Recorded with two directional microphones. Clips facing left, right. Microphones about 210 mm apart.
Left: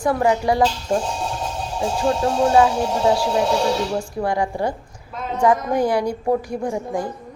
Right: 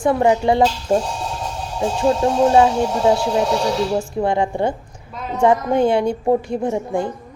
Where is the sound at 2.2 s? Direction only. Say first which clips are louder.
Right 2 dB; 25° right (ahead or behind).